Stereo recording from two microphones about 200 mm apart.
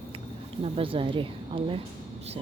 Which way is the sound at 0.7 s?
25° right (ahead or behind).